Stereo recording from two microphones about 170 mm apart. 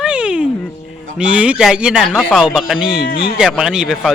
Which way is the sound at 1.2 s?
5° right (ahead or behind).